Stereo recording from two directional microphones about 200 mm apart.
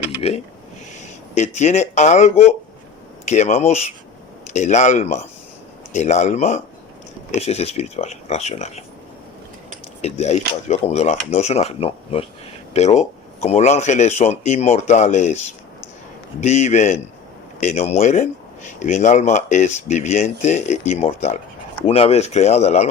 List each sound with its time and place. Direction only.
0.2 s speech: 30° left (ahead or behind)
10.0 s speech: 35° left (ahead or behind)
16.4 s speech: 35° left (ahead or behind)